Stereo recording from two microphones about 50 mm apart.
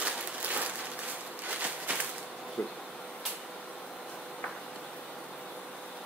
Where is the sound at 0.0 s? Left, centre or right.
Right.